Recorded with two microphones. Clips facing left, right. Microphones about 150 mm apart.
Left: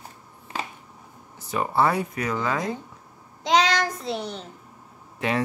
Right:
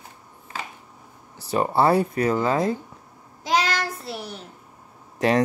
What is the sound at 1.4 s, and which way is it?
Speech, 35° right (ahead or behind).